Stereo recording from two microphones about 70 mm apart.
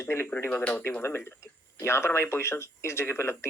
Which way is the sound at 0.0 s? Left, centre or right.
Left.